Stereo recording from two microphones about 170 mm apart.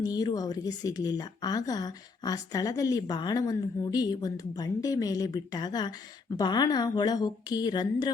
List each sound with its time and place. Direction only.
0.0 s a woman's voice: 25° left (ahead or behind)